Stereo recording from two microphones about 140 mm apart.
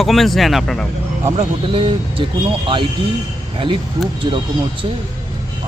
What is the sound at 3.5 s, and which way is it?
Speech, 35° right (ahead or behind).